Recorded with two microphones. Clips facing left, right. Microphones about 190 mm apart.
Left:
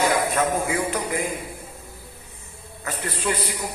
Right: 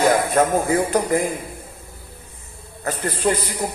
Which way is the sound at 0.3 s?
40° right (ahead or behind).